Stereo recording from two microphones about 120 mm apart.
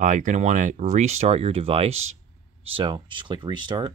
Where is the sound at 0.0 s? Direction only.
90° right; by 2.0 s 55° right (ahead or behind).